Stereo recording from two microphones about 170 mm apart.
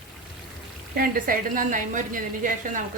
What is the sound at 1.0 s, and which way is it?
Speech, 55° right (ahead or behind).